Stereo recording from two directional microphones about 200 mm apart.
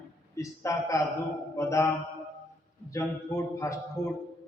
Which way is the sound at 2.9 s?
15° left (ahead or behind).